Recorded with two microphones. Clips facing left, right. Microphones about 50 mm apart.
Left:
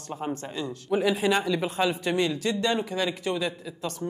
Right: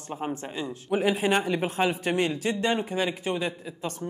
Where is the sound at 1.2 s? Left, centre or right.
Right.